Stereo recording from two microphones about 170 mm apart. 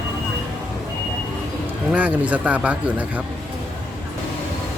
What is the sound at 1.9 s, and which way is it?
Speech, 10° right (ahead or behind).